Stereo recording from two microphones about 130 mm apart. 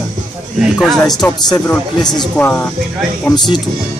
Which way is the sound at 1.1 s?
30° left (ahead or behind).